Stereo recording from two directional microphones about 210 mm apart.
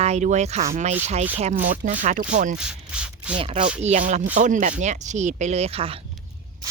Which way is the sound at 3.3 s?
30° right (ahead or behind).